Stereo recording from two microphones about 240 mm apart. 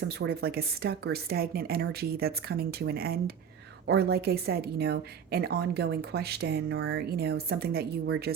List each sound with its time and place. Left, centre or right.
0.1 s a woman's voice: right